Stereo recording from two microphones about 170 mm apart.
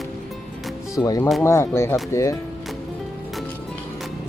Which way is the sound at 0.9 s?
20° left (ahead or behind).